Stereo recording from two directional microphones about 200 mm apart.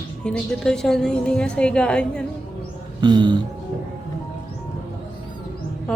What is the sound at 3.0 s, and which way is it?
Speech, 20° right (ahead or behind).